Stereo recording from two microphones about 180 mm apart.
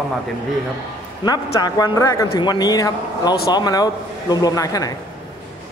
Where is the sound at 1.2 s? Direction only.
20° left (ahead or behind).